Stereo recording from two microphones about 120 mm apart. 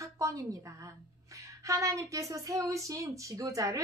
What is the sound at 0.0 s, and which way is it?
Speech, 30° right (ahead or behind).